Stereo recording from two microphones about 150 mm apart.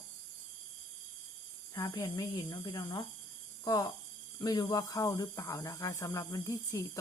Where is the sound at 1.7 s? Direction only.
25° left (ahead or behind).